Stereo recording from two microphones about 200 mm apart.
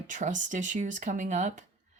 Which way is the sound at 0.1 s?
40° right (ahead or behind).